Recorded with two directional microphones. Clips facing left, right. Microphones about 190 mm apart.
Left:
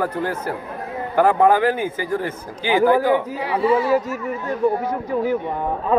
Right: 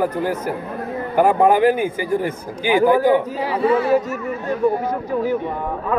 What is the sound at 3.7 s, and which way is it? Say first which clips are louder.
Speech: right 1 dB; 55° right (ahead or behind).